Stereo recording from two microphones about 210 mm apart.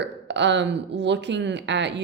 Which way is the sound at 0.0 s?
55° right (ahead or behind).